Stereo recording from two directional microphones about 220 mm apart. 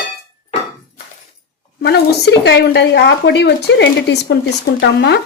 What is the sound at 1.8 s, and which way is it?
Speech, 50° left (ahead or behind).